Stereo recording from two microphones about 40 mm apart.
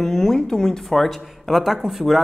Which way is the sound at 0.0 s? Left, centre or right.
Centre.